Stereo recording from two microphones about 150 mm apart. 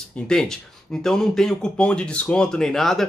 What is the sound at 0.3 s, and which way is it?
Speech, 5° left (ahead or behind).